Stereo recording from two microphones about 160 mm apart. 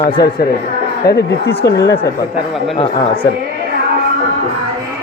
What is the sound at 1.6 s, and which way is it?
Speech, 20° left (ahead or behind).